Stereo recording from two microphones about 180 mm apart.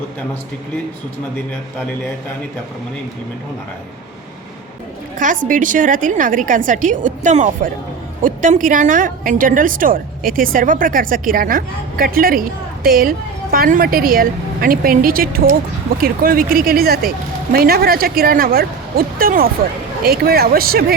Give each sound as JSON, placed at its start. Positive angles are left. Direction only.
{"t": 5.2, "sound": "a woman's voice", "side_deg": -45}